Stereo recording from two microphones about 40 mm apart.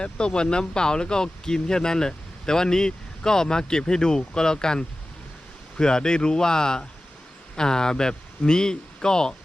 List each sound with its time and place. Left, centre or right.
0.3 s speech: centre